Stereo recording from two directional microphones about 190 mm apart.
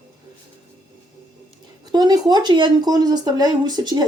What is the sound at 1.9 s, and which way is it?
Speech, 20° right (ahead or behind).